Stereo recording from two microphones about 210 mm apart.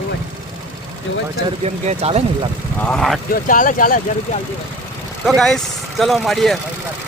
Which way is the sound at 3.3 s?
40° left (ahead or behind).